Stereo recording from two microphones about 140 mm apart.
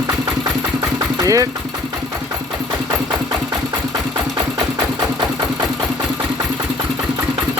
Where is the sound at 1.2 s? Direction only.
25° right (ahead or behind).